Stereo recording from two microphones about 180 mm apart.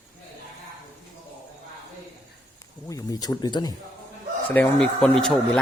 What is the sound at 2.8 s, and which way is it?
Speech, 20° left (ahead or behind).